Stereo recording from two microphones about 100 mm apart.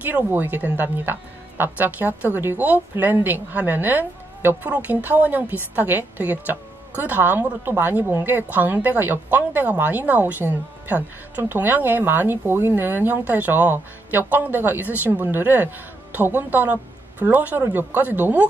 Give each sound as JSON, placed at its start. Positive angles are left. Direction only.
{"t": 0.0, "sound": "a woman's voice", "side_deg": -20}